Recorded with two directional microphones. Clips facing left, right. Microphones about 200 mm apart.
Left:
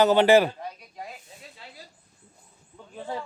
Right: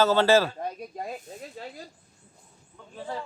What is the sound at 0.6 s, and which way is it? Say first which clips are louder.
Speech: right 5 dB; 50° right (ahead or behind).